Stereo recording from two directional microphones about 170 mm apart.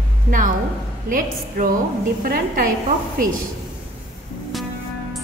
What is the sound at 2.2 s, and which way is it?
Speech, 55° right (ahead or behind).